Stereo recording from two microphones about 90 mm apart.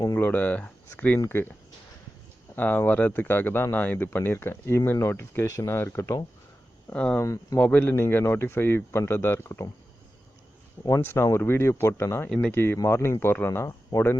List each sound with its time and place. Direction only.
0.2 s speech: 20° left (ahead or behind)
2.6 s speech: 20° left (ahead or behind)
6.9 s speech: 15° left (ahead or behind)
7.2 s speech: 35° left (ahead or behind)
7.6 s speech: 20° left (ahead or behind)
7.9 s speech: 30° left (ahead or behind)
11.0 s speech: 30° left (ahead or behind)
12.3 s speech: 10° left (ahead or behind)
12.5 s speech: 25° left (ahead or behind)